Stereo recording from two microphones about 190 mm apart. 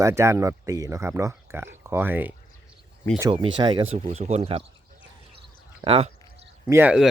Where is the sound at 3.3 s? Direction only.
25° right (ahead or behind).